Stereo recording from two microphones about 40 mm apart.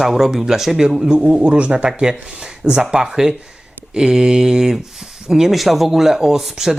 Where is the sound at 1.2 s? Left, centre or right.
Right.